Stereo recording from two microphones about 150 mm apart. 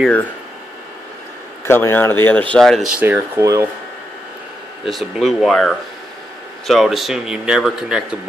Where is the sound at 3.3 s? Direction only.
20° right (ahead or behind).